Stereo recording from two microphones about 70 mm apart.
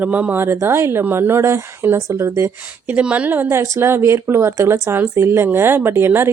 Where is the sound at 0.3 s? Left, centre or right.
Right.